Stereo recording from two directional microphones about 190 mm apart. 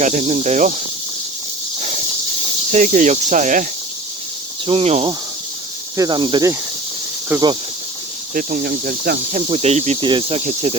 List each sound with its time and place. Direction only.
0.0 s speech: 40° right (ahead or behind)
2.7 s speech: 40° right (ahead or behind)
4.6 s speech: 30° right (ahead or behind)
8.3 s cricket: 45° right (ahead or behind)
9.5 s speech: 35° right (ahead or behind)